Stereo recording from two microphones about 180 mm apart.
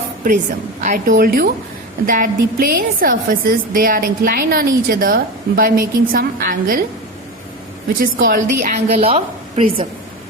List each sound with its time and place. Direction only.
0.8 s a woman's voice: 45° right (ahead or behind)
7.9 s a woman's voice: 50° right (ahead or behind); by 9.8 s 30° right (ahead or behind)